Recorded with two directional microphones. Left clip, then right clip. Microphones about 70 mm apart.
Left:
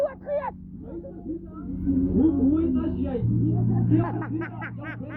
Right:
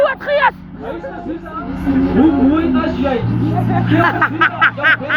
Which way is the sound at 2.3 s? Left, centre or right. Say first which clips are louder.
Right 10 dB; right.